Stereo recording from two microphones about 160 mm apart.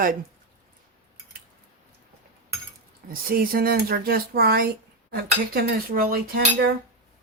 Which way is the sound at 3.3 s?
65° right (ahead or behind).